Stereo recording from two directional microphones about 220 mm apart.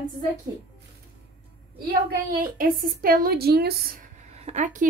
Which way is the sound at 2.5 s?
40° right (ahead or behind).